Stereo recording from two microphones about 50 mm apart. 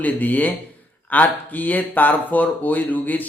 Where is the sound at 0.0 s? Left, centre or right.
Left.